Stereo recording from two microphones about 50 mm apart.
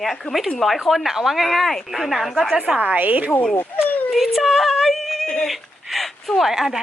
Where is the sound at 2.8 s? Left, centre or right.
Right.